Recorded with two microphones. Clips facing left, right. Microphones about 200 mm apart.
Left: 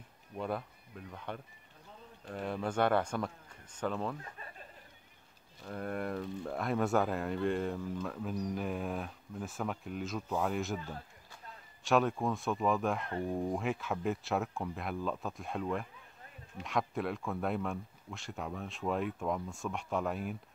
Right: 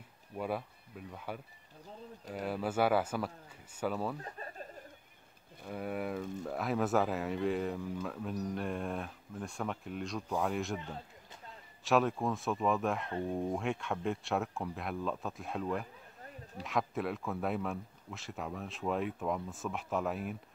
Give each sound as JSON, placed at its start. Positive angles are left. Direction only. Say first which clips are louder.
{"t": 0.4, "sound": "speech", "louder": "even", "side_deg": -5}
{"t": 4.2, "sound": "chuckle", "louder": "right 5 dB", "side_deg": -40}
{"t": 5.7, "sound": "speech", "louder": "even", "side_deg": -5}
{"t": 11.8, "sound": "speech", "louder": "even", "side_deg": 0}